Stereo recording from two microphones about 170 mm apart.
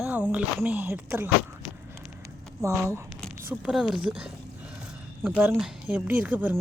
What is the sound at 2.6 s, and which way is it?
Speech, 15° right (ahead or behind).